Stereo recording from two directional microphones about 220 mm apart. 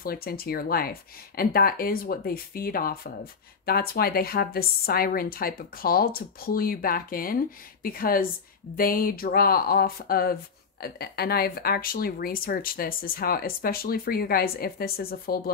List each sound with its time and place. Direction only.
0.0 s a woman's voice: 45° left (ahead or behind)